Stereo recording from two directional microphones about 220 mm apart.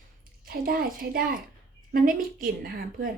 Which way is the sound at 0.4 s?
45° right (ahead or behind).